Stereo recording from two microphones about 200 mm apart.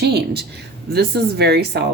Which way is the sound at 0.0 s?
55° right (ahead or behind).